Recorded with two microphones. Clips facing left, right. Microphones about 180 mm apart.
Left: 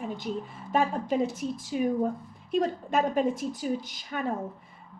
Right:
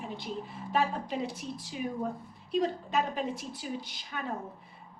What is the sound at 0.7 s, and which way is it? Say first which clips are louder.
A woman's voice: left 4 dB; 45° left (ahead or behind).